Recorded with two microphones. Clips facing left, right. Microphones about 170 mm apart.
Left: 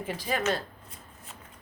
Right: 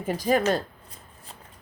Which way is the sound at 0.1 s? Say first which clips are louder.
Right 7 dB; 40° right (ahead or behind).